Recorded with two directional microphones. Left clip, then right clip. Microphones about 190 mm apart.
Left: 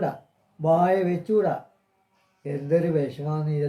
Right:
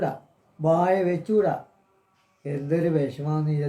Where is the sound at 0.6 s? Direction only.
20° right (ahead or behind).